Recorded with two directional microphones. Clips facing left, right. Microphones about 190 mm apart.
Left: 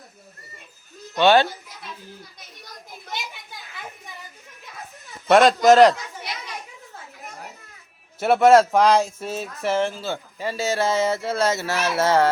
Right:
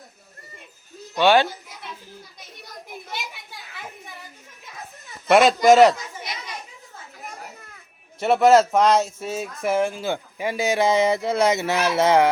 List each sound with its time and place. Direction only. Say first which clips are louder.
1.1 s speech: left 1 dB; 10° right (ahead or behind)
5.3 s speech: even; 5° right (ahead or behind)
8.2 s speech: left 1 dB; centre (ahead or behind); by 12.3 s 15° right (ahead or behind)